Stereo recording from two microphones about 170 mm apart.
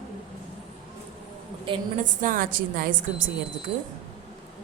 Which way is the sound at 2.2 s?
55° right (ahead or behind).